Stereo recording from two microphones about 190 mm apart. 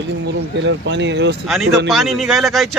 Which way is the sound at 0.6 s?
70° right (ahead or behind).